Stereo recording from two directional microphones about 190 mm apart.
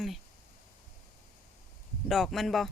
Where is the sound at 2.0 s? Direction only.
Centre (ahead or behind).